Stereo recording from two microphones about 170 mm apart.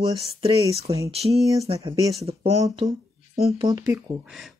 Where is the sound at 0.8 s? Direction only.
20° right (ahead or behind).